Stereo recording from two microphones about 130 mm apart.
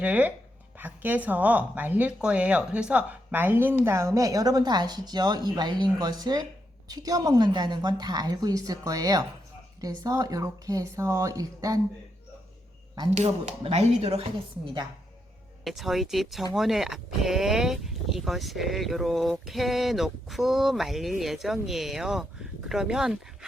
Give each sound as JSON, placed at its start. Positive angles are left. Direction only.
{"t": 0.0, "sound": "a woman's voice", "side_deg": -10}
{"t": 13.1, "sound": "speech", "side_deg": -55}
{"t": 15.6, "sound": "speech", "side_deg": 0}